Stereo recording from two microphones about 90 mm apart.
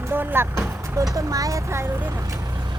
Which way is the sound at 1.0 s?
40° right (ahead or behind).